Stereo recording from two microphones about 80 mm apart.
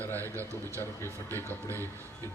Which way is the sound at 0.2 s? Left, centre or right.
Right.